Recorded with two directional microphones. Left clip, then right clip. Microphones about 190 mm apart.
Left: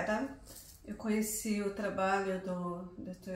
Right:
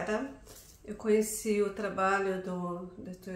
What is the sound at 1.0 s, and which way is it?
Speech, 15° right (ahead or behind).